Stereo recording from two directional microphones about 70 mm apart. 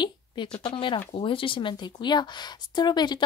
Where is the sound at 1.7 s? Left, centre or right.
Left.